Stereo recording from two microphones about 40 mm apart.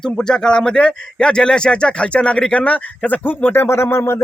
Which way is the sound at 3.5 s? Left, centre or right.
Left.